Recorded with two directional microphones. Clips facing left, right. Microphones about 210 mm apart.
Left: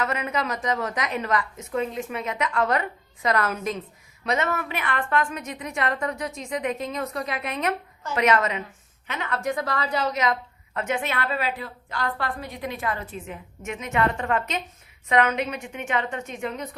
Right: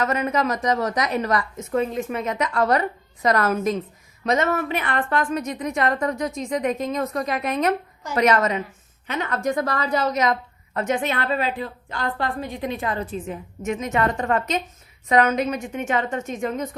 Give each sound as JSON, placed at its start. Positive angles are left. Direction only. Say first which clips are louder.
{"t": 0.0, "sound": "a woman's voice", "louder": "right 5 dB", "side_deg": -40}